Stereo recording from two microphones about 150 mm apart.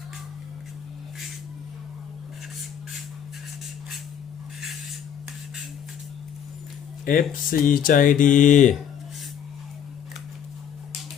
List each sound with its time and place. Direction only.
7.0 s speech: 70° left (ahead or behind)